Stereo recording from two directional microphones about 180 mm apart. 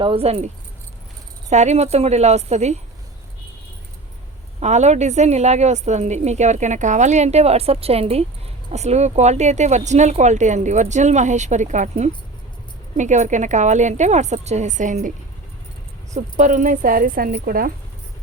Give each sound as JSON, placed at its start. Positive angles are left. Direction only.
{"t": 0.0, "sound": "a woman's voice", "side_deg": -30}
{"t": 4.6, "sound": "a woman's voice", "side_deg": -40}
{"t": 16.1, "sound": "a woman's voice", "side_deg": -45}